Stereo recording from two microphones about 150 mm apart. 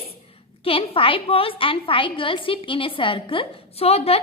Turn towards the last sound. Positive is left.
turn(degrees=40)  # may be behind; listen again after turning